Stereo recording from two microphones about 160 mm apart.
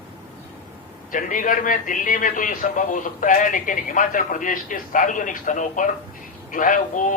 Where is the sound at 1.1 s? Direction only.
55° left (ahead or behind).